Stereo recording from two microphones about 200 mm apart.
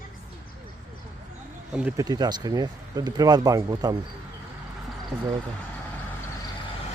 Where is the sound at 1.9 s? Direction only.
20° right (ahead or behind).